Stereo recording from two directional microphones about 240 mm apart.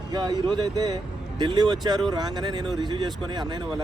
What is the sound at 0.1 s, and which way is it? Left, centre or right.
Speech, centre.